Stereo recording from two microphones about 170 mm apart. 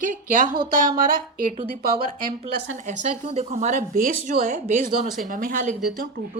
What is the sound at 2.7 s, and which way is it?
Speech, 45° right (ahead or behind).